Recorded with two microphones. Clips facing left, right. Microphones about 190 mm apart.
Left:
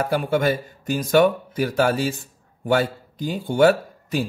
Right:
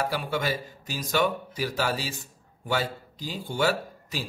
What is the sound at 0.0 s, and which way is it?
Speech, 50° left (ahead or behind).